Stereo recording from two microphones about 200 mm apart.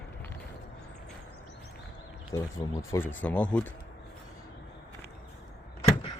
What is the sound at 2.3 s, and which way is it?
Speech, 15° left (ahead or behind).